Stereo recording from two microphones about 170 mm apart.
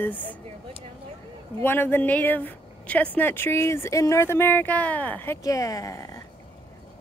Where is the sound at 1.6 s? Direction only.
15° left (ahead or behind).